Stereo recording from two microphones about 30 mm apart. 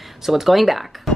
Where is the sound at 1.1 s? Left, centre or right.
Centre.